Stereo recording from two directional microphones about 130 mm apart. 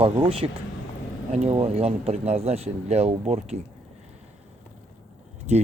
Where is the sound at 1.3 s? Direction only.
55° right (ahead or behind).